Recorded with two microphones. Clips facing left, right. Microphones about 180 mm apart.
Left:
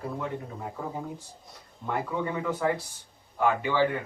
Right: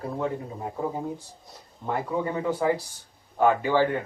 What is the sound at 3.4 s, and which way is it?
Speech, 40° right (ahead or behind).